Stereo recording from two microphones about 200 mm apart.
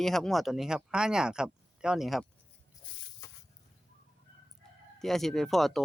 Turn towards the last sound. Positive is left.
turn(degrees=0)  # may be behind; listen again after turning